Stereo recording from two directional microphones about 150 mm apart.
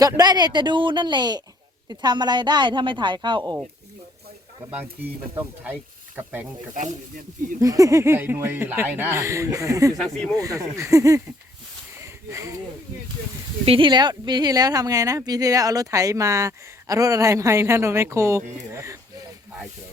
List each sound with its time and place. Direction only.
0.0 s a woman's voice: 25° right (ahead or behind)
4.7 s speech: 10° right (ahead or behind)
7.6 s a woman's voice: 20° right (ahead or behind)
11.9 s a sound: 20° right (ahead or behind)
13.7 s a woman's voice: 35° right (ahead or behind); by 18.9 s 20° right (ahead or behind)